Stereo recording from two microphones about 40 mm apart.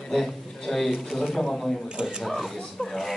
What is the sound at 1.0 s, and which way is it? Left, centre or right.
Speech, centre.